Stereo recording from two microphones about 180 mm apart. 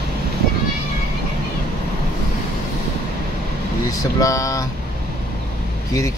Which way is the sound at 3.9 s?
20° left (ahead or behind).